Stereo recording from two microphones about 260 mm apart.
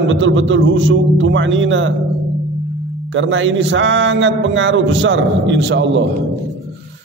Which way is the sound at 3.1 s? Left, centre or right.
Right.